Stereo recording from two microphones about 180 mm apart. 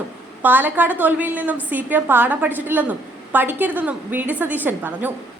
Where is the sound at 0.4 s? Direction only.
10° right (ahead or behind).